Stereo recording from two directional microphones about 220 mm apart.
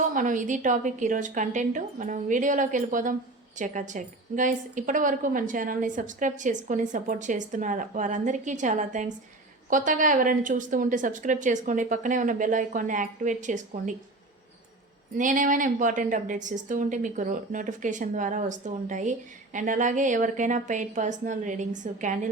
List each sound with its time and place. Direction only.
0.0 s a woman's voice: 35° right (ahead or behind)
15.2 s a woman's voice: 35° right (ahead or behind)